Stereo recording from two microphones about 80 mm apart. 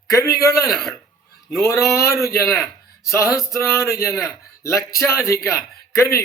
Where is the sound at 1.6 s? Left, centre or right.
Left.